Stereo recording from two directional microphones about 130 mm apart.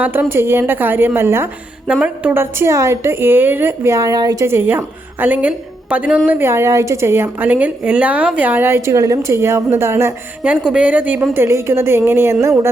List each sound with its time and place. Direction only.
0.0 s a woman's voice: 15° right (ahead or behind)